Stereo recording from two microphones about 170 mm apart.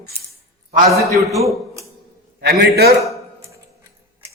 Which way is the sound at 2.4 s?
65° right (ahead or behind).